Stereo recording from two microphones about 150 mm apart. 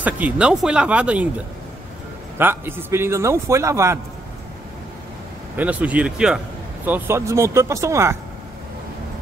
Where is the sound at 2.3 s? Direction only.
15° right (ahead or behind).